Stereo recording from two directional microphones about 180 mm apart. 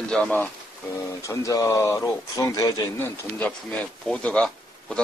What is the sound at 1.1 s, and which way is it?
Speech, 15° left (ahead or behind).